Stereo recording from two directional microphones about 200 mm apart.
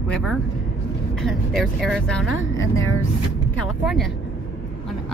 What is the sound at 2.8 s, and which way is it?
Speech, 90° left.